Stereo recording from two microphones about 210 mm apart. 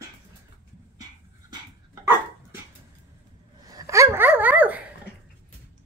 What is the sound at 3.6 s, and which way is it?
Dog, 15° right (ahead or behind).